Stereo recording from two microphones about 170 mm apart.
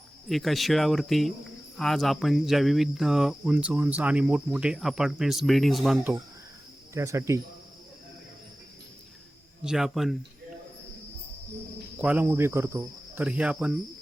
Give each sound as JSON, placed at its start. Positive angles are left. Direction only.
{"t": 0.3, "sound": "speech", "side_deg": 0}
{"t": 6.9, "sound": "speech", "side_deg": -15}
{"t": 9.6, "sound": "speech", "side_deg": -5}
{"t": 11.9, "sound": "speech", "side_deg": -10}